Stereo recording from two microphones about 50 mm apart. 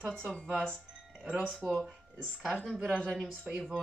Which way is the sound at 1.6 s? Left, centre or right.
Right.